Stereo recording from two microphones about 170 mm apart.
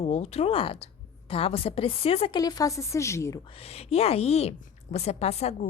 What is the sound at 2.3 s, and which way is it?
A woman's voice, 20° left (ahead or behind).